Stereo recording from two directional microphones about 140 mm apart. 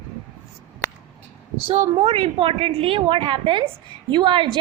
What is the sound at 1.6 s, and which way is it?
A woman's voice, 45° right (ahead or behind).